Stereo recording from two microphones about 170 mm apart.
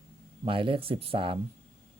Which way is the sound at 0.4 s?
30° right (ahead or behind).